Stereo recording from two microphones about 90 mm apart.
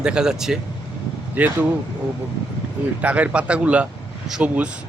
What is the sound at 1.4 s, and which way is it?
Speech, 20° right (ahead or behind).